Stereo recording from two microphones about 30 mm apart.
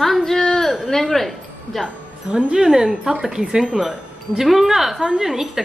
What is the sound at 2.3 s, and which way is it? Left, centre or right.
Speech, right.